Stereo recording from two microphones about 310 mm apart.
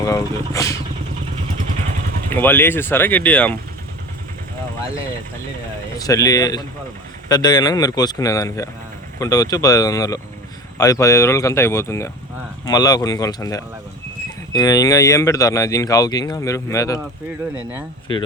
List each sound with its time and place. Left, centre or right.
0.0 s speech: centre
2.3 s speech: centre
6.0 s speech: centre
18.1 s speech: centre